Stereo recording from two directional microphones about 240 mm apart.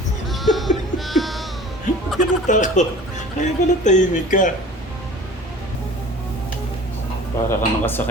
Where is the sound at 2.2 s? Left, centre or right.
Left.